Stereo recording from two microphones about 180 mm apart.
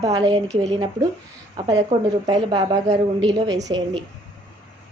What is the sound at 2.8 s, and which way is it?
Speech, 35° right (ahead or behind).